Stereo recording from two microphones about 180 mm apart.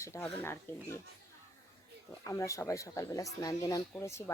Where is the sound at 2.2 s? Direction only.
15° left (ahead or behind).